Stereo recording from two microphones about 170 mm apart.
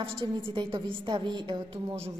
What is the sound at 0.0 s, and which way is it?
A woman's voice, 30° right (ahead or behind).